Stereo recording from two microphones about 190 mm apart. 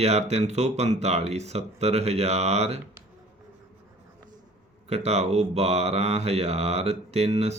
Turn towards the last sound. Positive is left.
turn(degrees=-35)  # may be behind; listen again after turning